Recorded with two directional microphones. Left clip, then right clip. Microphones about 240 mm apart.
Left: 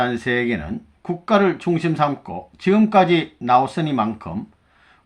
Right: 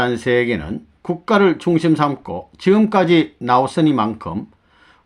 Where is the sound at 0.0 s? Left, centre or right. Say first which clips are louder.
Right 4 dB; right.